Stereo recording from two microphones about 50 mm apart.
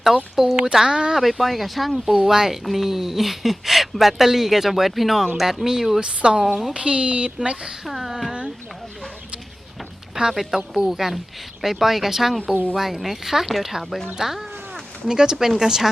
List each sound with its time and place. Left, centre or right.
0.3 s speech: centre
1.1 s speech: centre
2.0 s speech: centre
6.0 s speech: centre
7.9 s speech: centre
10.2 s speech: centre